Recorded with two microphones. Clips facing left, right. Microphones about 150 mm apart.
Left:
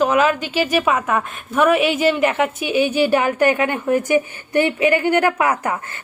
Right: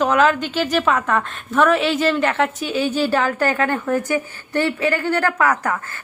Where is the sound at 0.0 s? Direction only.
5° left (ahead or behind).